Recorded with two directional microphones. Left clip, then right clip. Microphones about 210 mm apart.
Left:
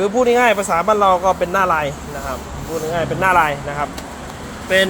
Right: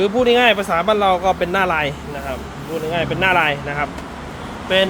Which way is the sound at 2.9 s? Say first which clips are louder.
Left 2 dB; 15° right (ahead or behind).